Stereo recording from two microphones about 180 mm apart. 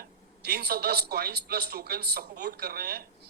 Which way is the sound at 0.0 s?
65° right (ahead or behind).